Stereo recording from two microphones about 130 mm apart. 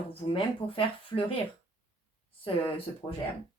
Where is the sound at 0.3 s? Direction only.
45° left (ahead or behind).